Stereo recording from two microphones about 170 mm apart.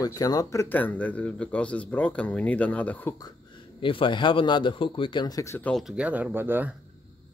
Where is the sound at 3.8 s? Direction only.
30° left (ahead or behind); by 5.7 s 15° left (ahead or behind).